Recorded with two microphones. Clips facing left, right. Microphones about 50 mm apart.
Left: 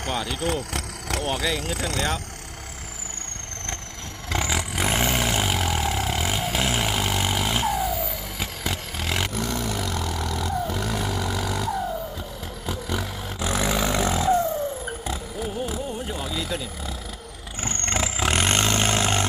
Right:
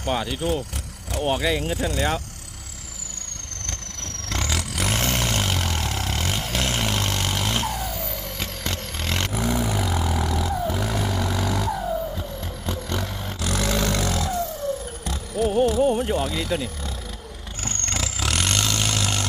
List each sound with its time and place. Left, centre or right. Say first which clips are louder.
0.1 s speech: right 4 dB; right
0.3 s vehicle: right 1 dB; left
1.2 s speech: right 5 dB; right
1.8 s speech: right 2 dB; left
3.7 s vehicle: even; centre
9.3 s vehicle: right 3 dB; centre
13.4 s a sound: even; centre
15.0 s vehicle: right 4 dB; centre
15.8 s vehicle: right 11 dB; right
16.2 s speech: right 4 dB; centre
17.6 s vehicle: left 3 dB; left